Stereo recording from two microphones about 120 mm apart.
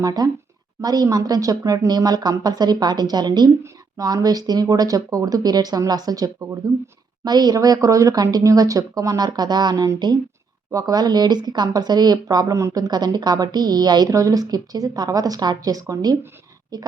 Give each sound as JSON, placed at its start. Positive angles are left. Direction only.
{"t": 0.0, "sound": "speech", "side_deg": -30}